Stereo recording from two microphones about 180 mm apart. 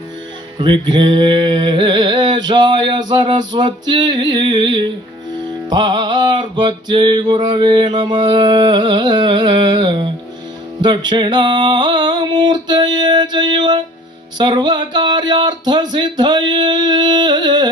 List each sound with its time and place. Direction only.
0.6 s music: 25° right (ahead or behind)